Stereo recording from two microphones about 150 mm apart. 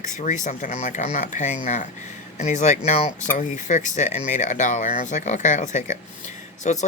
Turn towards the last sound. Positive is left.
turn(degrees=50)  # may be behind; listen again after turning